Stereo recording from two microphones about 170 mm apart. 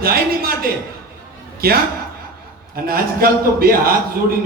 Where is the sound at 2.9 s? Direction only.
60° right (ahead or behind).